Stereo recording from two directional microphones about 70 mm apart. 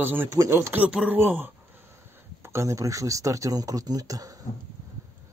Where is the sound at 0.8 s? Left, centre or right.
Centre.